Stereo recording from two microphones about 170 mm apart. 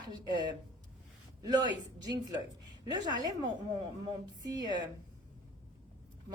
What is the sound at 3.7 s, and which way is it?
A woman's voice, 25° right (ahead or behind).